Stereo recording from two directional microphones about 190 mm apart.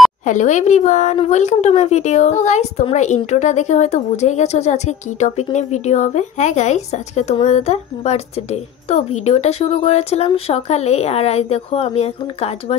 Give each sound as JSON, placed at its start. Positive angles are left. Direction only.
{"t": 0.2, "sound": "speech", "side_deg": 40}